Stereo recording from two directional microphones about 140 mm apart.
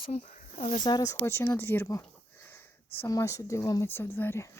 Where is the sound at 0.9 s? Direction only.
25° left (ahead or behind).